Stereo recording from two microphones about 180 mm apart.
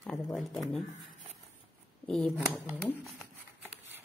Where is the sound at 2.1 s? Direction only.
Centre (ahead or behind).